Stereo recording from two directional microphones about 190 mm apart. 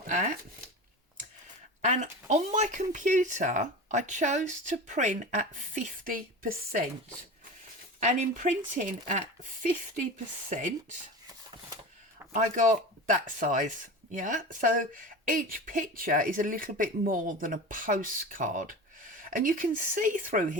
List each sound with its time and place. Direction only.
0.1 s speech: 45° right (ahead or behind)
1.8 s speech: 40° right (ahead or behind)
8.0 s speech: 40° right (ahead or behind)
12.3 s speech: 40° right (ahead or behind)